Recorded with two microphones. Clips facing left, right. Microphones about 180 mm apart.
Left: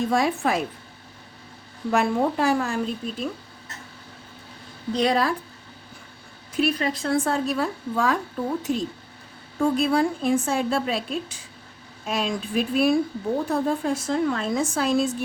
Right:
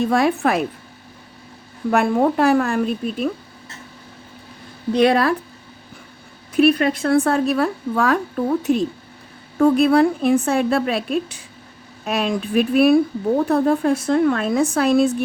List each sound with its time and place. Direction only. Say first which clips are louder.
0.1 s a woman's voice: right 5 dB; 65° right (ahead or behind)
1.9 s a woman's voice: right 5 dB; 55° right (ahead or behind)
4.9 s a woman's voice: right 6 dB; 60° right (ahead or behind)
6.5 s a woman's voice: right 8 dB; 65° right (ahead or behind)